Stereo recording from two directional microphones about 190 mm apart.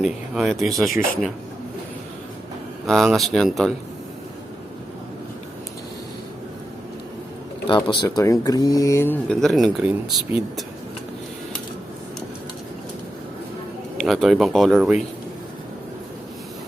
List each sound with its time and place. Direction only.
0.3 s speech: centre (ahead or behind)
0.9 s a man's voice: 45° left (ahead or behind)
2.8 s speech: centre (ahead or behind)
7.7 s speech: 25° left (ahead or behind); by 10.4 s 5° right (ahead or behind)
14.0 s speech: centre (ahead or behind)